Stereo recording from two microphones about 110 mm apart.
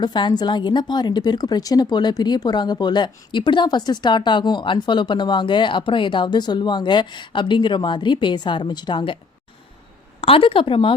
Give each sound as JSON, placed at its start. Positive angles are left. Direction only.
{"t": 0.0, "sound": "a woman's voice", "side_deg": 45}
{"t": 10.2, "sound": "a woman's voice", "side_deg": 55}